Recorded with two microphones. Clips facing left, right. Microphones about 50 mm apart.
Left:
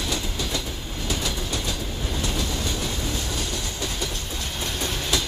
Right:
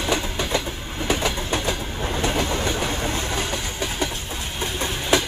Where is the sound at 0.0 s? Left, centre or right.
Right.